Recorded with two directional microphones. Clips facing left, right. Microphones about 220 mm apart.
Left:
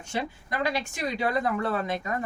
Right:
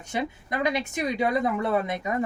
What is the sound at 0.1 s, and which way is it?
Speech, 20° right (ahead or behind).